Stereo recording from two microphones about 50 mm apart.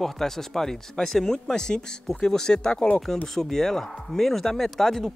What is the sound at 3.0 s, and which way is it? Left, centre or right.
Speech, centre.